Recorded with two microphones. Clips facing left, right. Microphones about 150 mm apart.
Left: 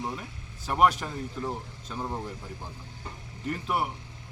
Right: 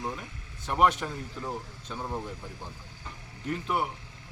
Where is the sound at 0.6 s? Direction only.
Centre (ahead or behind).